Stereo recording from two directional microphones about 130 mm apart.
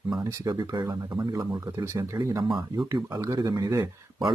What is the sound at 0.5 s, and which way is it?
Speech, 35° right (ahead or behind).